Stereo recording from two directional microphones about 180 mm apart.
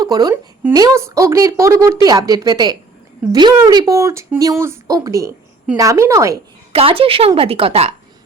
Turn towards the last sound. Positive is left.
turn(degrees=-35)  # may be behind; listen again after turning